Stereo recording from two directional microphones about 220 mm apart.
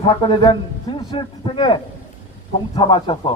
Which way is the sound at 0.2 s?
20° left (ahead or behind).